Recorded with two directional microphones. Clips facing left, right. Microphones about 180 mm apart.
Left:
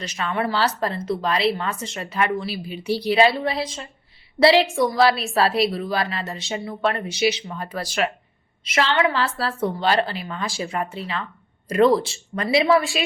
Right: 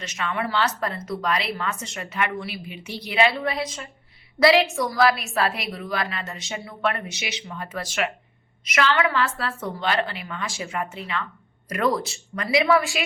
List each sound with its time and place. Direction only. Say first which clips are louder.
0.0 s a woman's voice: left 3 dB; 35° left (ahead or behind)